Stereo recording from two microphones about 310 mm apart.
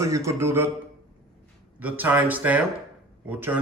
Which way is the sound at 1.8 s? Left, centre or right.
Centre.